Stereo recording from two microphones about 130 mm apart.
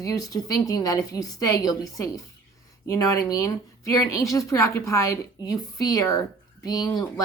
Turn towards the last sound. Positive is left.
turn(degrees=25)  # may be behind; listen again after turning